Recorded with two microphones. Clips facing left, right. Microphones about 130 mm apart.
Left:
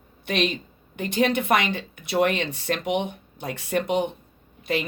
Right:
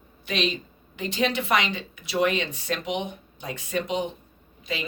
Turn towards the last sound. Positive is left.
turn(degrees=60)  # may be behind; listen again after turning